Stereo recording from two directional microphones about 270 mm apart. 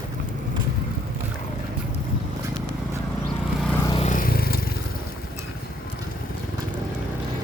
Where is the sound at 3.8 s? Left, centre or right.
Left.